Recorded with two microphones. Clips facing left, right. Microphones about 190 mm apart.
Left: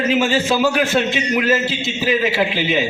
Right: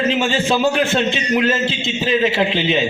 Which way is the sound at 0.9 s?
5° left (ahead or behind).